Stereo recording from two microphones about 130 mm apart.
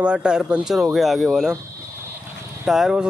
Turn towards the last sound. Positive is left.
turn(degrees=-5)  # may be behind; listen again after turning